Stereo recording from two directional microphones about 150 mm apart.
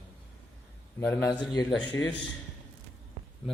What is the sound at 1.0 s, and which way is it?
Speech, 15° left (ahead or behind).